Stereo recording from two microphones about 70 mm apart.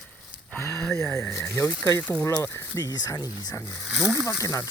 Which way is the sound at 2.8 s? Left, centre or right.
Left.